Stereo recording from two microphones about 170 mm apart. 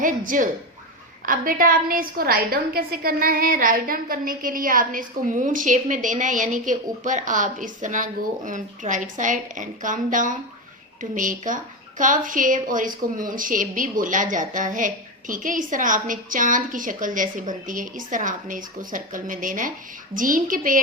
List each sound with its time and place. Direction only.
0.0 s a woman's voice: 50° right (ahead or behind)